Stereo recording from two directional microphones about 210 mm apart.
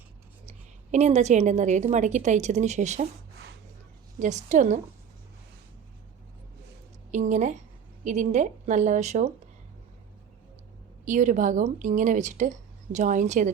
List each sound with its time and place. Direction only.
0.4 s a woman's voice: 35° right (ahead or behind)
4.2 s a woman's voice: 35° right (ahead or behind)
7.1 s a woman's voice: 35° right (ahead or behind)
11.0 s a woman's voice: 35° right (ahead or behind)